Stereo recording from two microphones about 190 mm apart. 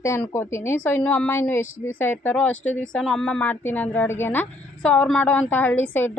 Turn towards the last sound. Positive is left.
turn(degrees=10)  # may be behind; listen again after turning